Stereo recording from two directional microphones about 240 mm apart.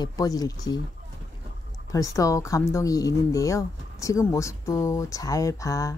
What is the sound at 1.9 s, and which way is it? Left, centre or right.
Speech, centre.